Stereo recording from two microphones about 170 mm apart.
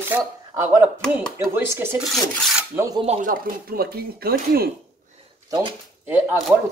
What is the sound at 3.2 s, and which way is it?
Speech, 55° right (ahead or behind).